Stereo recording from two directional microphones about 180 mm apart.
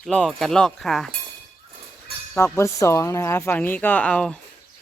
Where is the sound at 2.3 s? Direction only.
15° left (ahead or behind).